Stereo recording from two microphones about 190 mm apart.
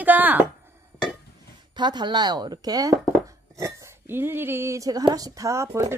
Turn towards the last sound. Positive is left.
turn(degrees=-15)  # may be behind; listen again after turning